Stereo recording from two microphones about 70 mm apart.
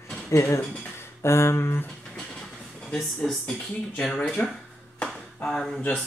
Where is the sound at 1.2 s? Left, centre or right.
Left.